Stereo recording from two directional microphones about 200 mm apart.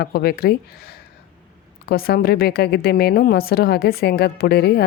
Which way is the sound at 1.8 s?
50° left (ahead or behind).